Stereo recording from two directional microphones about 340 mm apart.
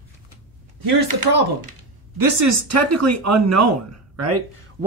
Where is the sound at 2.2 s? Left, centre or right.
Right.